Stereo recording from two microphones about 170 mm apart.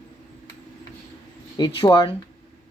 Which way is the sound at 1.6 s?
25° left (ahead or behind).